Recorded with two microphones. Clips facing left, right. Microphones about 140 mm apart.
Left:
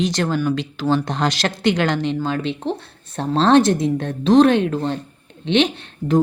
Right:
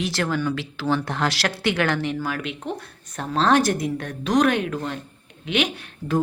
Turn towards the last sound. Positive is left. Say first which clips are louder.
# left 6 dB
turn(degrees=25)  # may be behind; listen again after turning